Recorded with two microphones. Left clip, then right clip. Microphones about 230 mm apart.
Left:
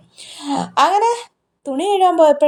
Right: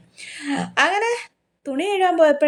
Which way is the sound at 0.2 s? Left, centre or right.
Centre.